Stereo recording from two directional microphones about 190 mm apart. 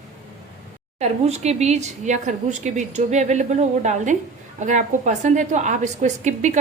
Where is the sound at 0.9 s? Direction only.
35° right (ahead or behind).